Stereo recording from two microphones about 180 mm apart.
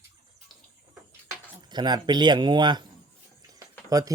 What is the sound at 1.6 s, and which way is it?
Speech, 25° right (ahead or behind).